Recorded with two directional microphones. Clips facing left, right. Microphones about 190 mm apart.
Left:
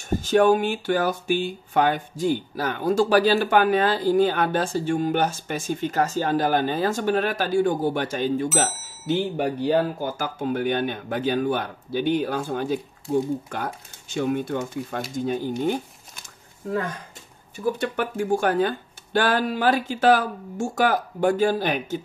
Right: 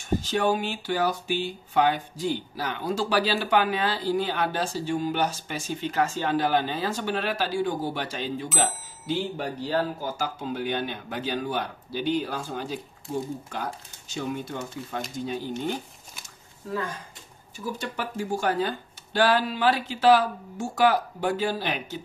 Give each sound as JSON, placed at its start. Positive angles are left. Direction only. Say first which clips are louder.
{"t": 0.2, "sound": "speech", "louder": "left 12 dB", "side_deg": 50}
{"t": 17.6, "sound": "speech", "louder": "left 7 dB", "side_deg": 55}